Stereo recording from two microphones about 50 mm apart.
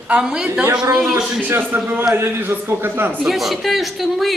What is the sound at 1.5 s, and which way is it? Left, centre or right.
Speech, right.